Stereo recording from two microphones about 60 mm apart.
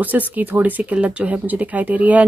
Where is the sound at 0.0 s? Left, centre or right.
Right.